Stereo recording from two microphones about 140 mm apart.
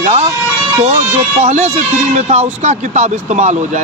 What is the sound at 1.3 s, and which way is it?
A man's voice, 50° right (ahead or behind).